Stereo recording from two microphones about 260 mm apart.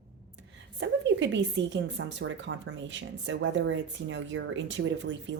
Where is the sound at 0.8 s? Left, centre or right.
Right.